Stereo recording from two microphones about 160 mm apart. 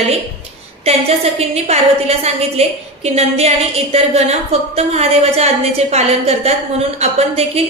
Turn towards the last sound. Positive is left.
turn(degrees=-40)  # may be behind; listen again after turning